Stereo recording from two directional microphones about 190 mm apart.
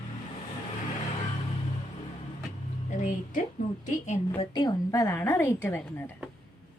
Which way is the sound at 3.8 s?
40° left (ahead or behind).